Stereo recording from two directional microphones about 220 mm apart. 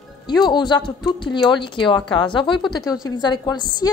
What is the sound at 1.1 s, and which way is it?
Speech, 20° left (ahead or behind).